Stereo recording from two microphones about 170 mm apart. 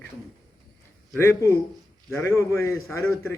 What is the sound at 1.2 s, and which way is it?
Speech, 15° left (ahead or behind).